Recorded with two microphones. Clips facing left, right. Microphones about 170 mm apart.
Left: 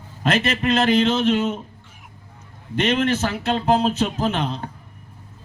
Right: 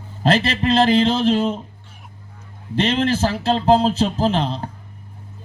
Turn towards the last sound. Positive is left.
turn(degrees=-30)  # may be behind; listen again after turning